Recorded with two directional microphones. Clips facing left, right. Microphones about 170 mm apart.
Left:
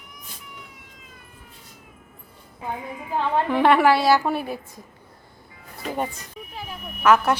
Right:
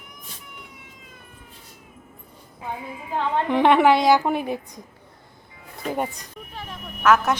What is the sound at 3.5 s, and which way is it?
A woman's voice, 20° right (ahead or behind).